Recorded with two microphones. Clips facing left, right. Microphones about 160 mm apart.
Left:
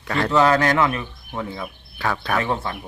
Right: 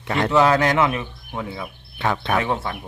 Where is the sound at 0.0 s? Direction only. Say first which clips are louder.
Right 1 dB; 20° right (ahead or behind).